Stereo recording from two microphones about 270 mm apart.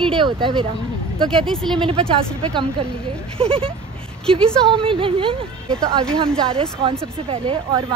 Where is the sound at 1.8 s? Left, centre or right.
Right.